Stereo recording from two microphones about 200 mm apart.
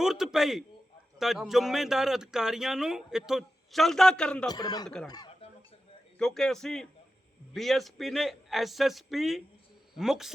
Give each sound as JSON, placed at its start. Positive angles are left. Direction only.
{"t": 0.0, "sound": "speech", "side_deg": -5}
{"t": 4.4, "sound": "speech", "side_deg": 20}
{"t": 5.0, "sound": "a sound", "side_deg": 20}
{"t": 6.1, "sound": "speech", "side_deg": 0}